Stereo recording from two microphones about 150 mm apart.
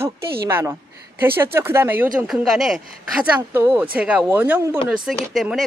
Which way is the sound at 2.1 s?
5° right (ahead or behind).